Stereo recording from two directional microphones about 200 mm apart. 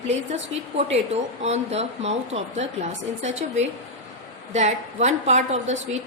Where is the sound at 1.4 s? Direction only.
35° right (ahead or behind).